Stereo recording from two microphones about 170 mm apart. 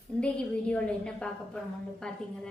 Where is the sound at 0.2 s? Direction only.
5° left (ahead or behind).